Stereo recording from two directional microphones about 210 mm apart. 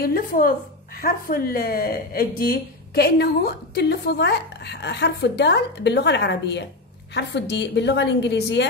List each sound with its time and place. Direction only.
0.0 s a woman's voice: 45° left (ahead or behind)